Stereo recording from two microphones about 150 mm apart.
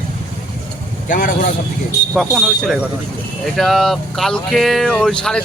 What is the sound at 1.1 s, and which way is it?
Speech, 65° left (ahead or behind).